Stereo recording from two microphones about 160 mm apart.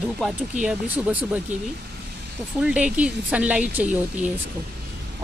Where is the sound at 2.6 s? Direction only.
5° right (ahead or behind).